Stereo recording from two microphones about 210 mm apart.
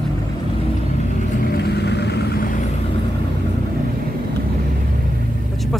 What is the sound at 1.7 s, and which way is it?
Vehicle, 55° left (ahead or behind).